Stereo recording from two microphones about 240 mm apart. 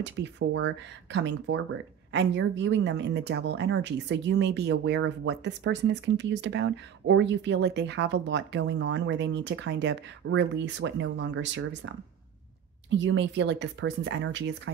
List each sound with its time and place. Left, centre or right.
0.0 s speech: right
12.9 s speech: right